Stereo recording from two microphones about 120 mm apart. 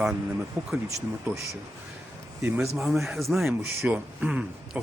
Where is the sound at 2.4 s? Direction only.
15° right (ahead or behind).